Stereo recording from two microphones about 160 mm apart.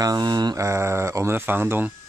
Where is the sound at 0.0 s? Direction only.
25° right (ahead or behind).